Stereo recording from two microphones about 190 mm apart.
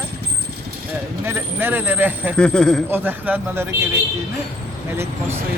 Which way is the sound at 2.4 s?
5° left (ahead or behind).